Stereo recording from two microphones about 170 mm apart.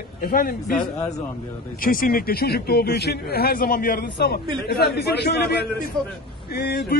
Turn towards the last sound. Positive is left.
turn(degrees=65)  # may be behind; listen again after turning